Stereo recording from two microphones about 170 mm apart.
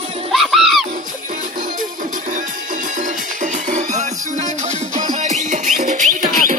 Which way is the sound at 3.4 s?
45° right (ahead or behind).